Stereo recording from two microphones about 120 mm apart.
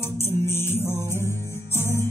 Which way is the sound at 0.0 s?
20° left (ahead or behind).